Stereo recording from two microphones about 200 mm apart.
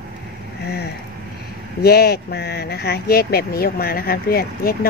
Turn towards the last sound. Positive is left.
turn(degrees=50)  # may be behind; listen again after turning